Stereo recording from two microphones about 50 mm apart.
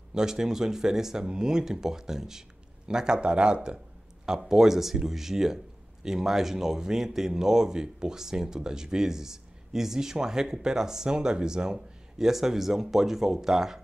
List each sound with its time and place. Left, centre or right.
0.1 s speech: centre